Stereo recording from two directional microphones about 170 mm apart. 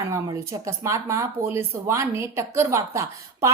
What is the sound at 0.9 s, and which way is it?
A woman's voice, 15° right (ahead or behind).